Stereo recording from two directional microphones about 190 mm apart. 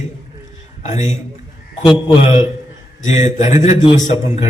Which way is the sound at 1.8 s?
25° left (ahead or behind).